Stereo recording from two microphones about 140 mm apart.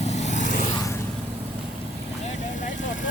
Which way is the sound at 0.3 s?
65° left (ahead or behind).